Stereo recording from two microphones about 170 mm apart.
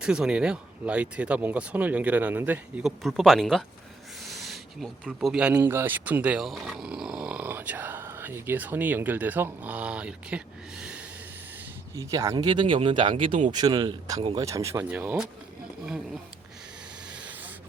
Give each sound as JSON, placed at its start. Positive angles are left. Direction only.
{"t": 0.0, "sound": "speech", "side_deg": -5}
{"t": 11.9, "sound": "speech", "side_deg": -20}
{"t": 17.1, "sound": "a sound", "side_deg": -5}